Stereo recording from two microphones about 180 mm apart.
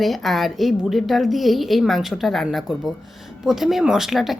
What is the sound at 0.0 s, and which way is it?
Speech, centre (ahead or behind).